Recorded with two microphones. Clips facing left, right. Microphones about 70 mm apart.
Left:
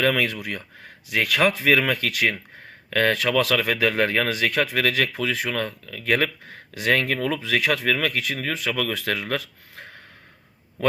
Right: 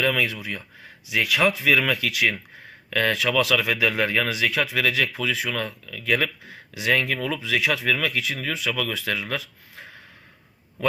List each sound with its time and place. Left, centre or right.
0.0 s speech: left